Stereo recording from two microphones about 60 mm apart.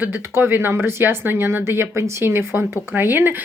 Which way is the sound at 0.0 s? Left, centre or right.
Right.